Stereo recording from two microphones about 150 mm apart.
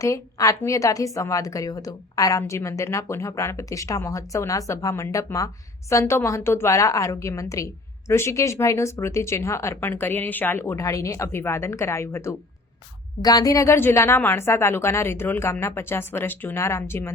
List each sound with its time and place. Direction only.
0.0 s a woman's voice: 20° left (ahead or behind)